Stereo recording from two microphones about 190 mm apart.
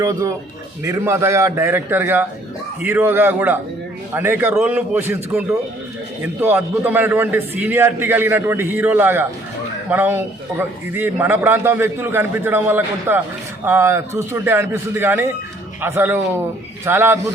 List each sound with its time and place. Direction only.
0.0 s a man's voice: 15° right (ahead or behind)